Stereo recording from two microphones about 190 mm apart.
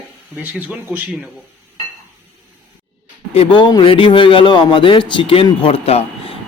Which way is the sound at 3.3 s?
30° left (ahead or behind).